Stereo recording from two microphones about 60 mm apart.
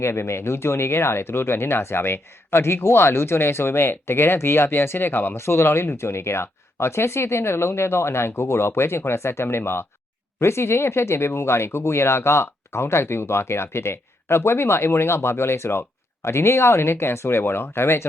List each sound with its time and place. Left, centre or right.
0.0 s speech: left